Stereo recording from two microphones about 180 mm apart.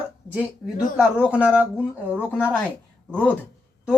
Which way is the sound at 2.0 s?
10° left (ahead or behind).